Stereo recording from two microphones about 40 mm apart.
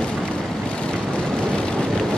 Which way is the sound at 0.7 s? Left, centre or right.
Left.